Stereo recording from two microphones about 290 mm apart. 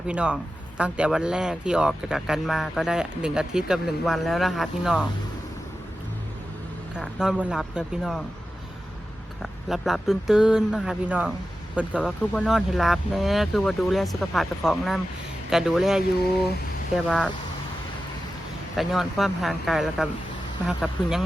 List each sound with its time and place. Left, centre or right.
0.1 s speech: centre
6.9 s speech: centre
9.4 s speech: centre
18.8 s speech: centre